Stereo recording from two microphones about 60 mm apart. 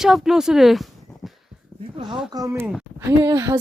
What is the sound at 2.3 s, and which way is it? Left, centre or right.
Speech, right.